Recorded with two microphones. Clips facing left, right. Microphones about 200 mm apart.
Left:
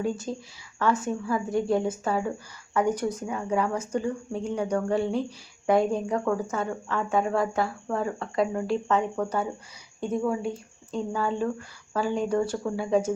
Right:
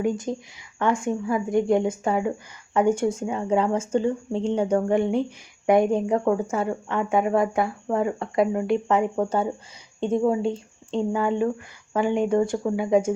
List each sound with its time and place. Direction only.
0.0 s speech: 20° right (ahead or behind)
9.1 s speech: 25° right (ahead or behind)